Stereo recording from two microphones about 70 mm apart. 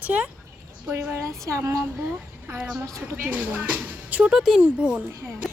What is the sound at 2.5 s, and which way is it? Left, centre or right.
Speech, right.